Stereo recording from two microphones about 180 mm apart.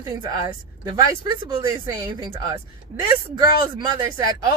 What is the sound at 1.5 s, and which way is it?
Speech, 25° right (ahead or behind).